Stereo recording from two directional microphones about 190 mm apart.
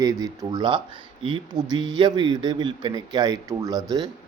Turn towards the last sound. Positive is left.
turn(degrees=-20)  # may be behind; listen again after turning